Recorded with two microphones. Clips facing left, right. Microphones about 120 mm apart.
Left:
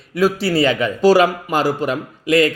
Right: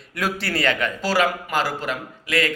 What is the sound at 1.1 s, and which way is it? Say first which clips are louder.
A man's voice: left 6 dB; 20° left (ahead or behind).